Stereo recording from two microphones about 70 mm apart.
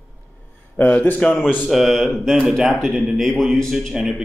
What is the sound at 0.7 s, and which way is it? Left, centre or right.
Speech, left.